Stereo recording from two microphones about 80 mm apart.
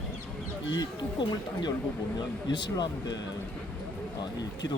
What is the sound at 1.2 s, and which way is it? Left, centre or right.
A man's voice, left.